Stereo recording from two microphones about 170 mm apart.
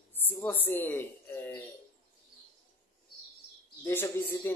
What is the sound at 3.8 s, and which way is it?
Speech, 15° left (ahead or behind).